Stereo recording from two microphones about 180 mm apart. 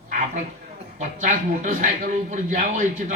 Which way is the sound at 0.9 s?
45° right (ahead or behind).